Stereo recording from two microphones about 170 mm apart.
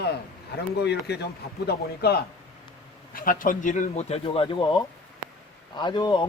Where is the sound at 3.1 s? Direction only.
55° left (ahead or behind).